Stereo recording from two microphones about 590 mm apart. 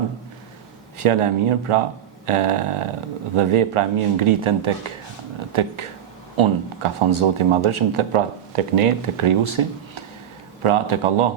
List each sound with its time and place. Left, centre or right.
0.9 s speech: right
6.3 s speech: right